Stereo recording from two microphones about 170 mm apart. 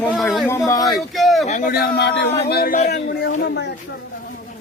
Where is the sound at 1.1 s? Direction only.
Centre (ahead or behind).